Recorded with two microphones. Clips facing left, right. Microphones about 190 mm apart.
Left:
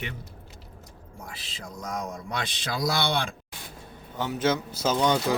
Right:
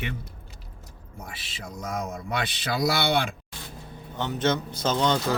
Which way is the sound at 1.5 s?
5° right (ahead or behind).